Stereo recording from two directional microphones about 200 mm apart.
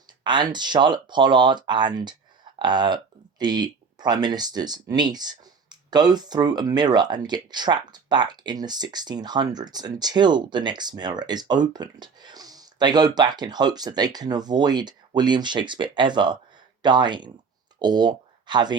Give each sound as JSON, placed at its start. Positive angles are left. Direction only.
{"t": 0.3, "sound": "speech", "side_deg": -20}